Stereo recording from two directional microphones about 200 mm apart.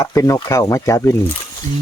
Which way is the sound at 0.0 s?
15° left (ahead or behind).